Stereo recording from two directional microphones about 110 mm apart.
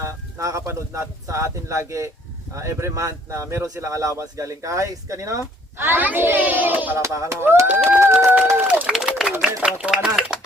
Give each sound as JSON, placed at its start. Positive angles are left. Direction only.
{"t": 0.0, "sound": "speech", "side_deg": -30}
{"t": 7.0, "sound": "speech", "side_deg": -30}
{"t": 8.5, "sound": "run", "side_deg": -15}
{"t": 8.9, "sound": "clapping", "side_deg": -5}
{"t": 9.6, "sound": "speech", "side_deg": -10}